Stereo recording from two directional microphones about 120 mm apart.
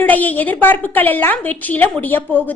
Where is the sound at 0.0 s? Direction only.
15° left (ahead or behind).